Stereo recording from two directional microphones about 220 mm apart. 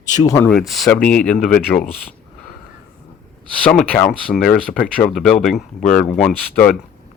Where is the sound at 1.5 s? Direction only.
40° left (ahead or behind).